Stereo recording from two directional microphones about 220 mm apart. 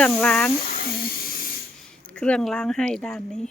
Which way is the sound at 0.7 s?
40° left (ahead or behind).